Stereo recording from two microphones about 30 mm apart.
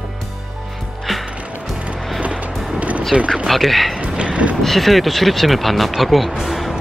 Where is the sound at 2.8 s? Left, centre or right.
Right.